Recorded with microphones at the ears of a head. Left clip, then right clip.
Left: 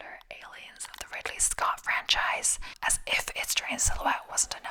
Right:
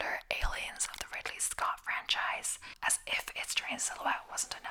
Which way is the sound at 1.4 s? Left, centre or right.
Left.